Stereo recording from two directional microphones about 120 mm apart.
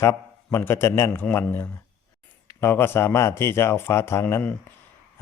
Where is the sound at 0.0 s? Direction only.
25° left (ahead or behind).